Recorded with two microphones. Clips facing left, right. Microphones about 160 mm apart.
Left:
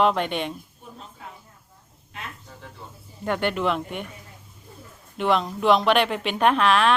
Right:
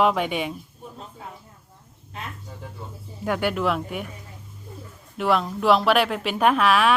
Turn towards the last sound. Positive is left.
turn(degrees=-5)  # may be behind; listen again after turning